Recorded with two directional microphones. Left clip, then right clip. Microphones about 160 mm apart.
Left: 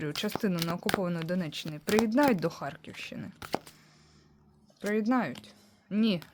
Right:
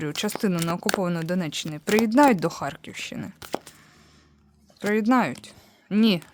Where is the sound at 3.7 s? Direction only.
35° right (ahead or behind).